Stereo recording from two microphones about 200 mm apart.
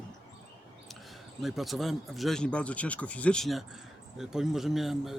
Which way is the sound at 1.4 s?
Centre (ahead or behind).